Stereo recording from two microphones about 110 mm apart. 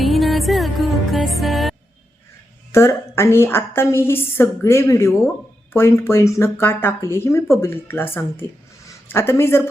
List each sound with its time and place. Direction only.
0.0 s music: centre (ahead or behind)
2.7 s a woman's voice: 25° left (ahead or behind)